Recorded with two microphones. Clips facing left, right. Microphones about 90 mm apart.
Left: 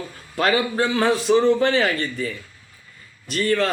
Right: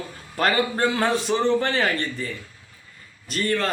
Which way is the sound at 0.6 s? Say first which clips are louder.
Left 1 dB; 40° right (ahead or behind).